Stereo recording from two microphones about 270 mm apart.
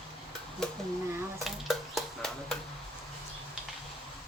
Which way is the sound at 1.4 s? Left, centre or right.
Centre.